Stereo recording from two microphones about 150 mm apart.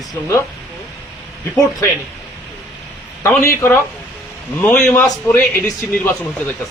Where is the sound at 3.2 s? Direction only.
20° left (ahead or behind).